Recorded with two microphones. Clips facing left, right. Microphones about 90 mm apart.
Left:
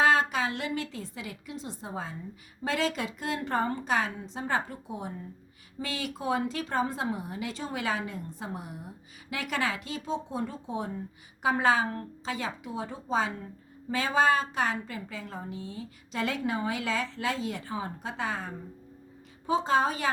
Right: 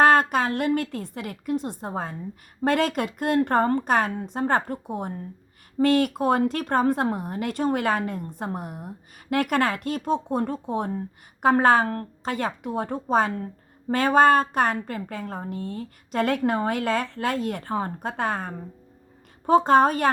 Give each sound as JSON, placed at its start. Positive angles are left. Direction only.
{"t": 0.0, "sound": "a woman's voice", "side_deg": -50}